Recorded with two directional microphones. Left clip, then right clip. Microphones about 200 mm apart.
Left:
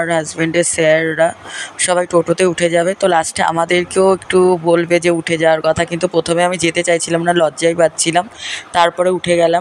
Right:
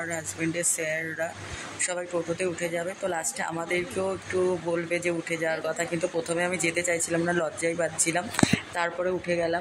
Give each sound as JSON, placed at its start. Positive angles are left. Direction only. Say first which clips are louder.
{"t": 0.0, "sound": "speech", "louder": "left 15 dB", "side_deg": 40}